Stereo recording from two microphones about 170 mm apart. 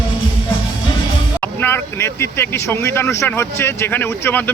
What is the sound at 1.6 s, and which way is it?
Speech, 10° left (ahead or behind).